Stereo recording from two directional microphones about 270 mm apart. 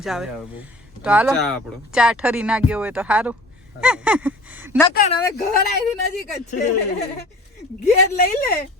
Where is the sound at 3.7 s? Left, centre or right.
Centre.